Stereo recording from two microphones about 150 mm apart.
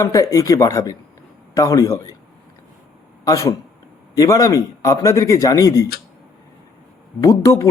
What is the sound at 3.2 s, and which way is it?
Speech, 25° left (ahead or behind).